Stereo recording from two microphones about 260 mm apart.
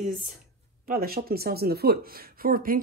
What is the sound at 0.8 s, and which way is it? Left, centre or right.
Speech, right.